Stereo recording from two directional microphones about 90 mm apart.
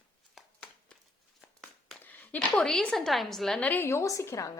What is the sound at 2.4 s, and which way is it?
Speech, 5° left (ahead or behind).